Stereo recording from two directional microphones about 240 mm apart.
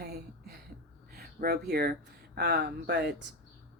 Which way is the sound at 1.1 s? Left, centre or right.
Right.